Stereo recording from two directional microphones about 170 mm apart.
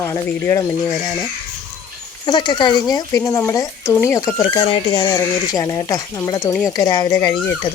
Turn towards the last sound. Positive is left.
turn(degrees=20)  # may be behind; listen again after turning